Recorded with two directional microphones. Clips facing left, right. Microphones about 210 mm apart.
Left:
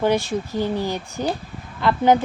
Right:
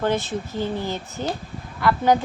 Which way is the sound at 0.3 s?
15° left (ahead or behind).